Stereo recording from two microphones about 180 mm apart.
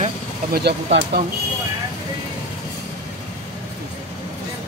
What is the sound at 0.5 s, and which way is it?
Speech, 65° right (ahead or behind).